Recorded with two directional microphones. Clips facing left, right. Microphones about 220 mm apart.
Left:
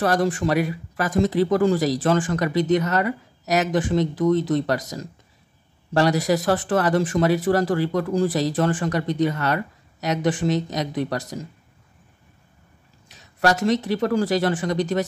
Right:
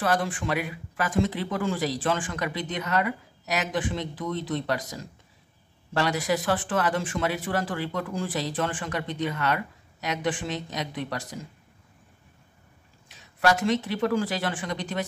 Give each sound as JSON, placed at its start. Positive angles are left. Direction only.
{"t": 0.0, "sound": "speech", "side_deg": 40}
{"t": 13.4, "sound": "speech", "side_deg": 40}